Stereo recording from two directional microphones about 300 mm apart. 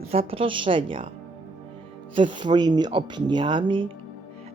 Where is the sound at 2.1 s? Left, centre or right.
Centre.